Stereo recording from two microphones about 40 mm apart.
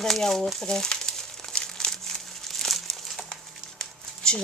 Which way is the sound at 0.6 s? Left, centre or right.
Centre.